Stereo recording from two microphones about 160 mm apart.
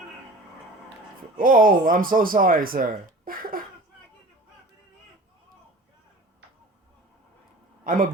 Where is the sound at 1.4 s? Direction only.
60° right (ahead or behind).